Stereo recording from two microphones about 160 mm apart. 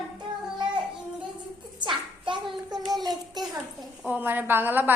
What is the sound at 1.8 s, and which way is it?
Hands, 30° right (ahead or behind).